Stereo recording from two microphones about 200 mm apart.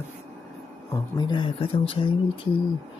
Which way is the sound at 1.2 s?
20° left (ahead or behind).